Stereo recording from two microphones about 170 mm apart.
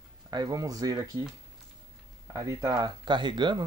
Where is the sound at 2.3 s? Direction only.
20° right (ahead or behind).